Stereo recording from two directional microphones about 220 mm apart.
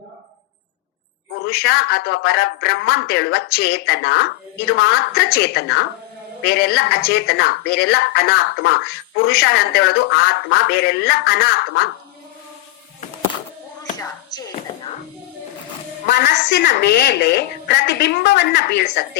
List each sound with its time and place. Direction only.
1.5 s a woman's voice: 45° left (ahead or behind)
14.0 s a sound: 15° left (ahead or behind)
16.0 s a woman's voice: 50° left (ahead or behind)